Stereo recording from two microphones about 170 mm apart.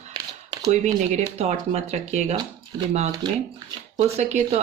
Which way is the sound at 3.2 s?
25° right (ahead or behind).